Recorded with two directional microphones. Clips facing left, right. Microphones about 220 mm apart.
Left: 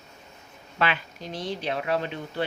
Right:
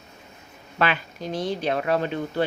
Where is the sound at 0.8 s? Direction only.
45° right (ahead or behind).